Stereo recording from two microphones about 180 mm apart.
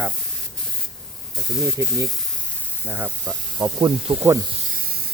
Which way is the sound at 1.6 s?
15° right (ahead or behind).